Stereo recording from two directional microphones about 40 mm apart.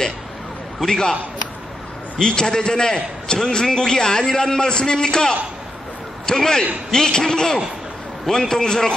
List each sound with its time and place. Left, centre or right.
0.7 s a man's voice: centre
2.1 s a man's voice: centre